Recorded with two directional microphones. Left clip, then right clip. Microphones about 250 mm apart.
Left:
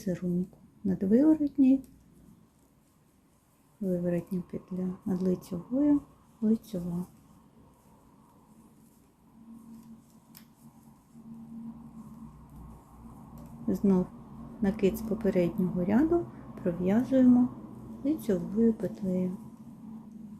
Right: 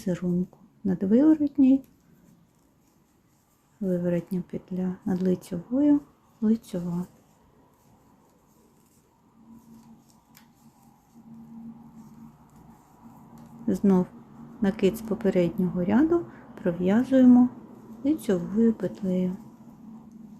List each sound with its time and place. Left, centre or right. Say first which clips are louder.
0.0 s speech: right 4 dB; centre
4.0 s speech: right 4 dB; centre
13.7 s speech: right 4 dB; centre